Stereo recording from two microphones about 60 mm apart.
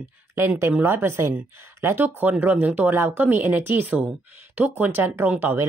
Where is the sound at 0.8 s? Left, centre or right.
Right.